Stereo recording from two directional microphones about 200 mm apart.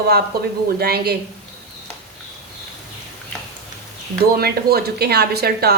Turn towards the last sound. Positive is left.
turn(degrees=-50)  # may be behind; listen again after turning